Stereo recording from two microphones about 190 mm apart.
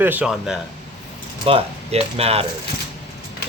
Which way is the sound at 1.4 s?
30° right (ahead or behind).